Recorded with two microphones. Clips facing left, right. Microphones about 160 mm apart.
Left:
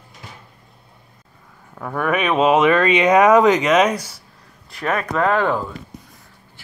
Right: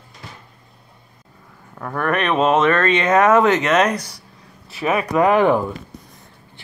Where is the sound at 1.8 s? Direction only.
5° left (ahead or behind).